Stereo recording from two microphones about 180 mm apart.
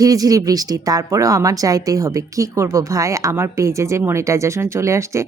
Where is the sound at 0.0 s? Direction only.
20° right (ahead or behind).